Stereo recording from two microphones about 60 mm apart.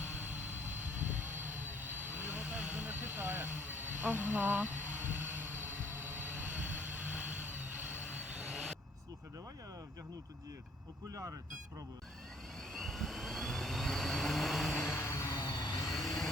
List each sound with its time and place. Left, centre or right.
0.9 s vehicle: right
8.4 s vehicle: centre
11.1 s speech: right
12.7 s vehicle: centre
14.8 s vehicle: left